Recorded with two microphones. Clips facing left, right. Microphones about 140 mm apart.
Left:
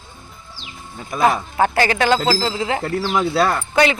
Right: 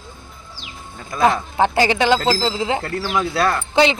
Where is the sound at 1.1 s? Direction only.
10° left (ahead or behind).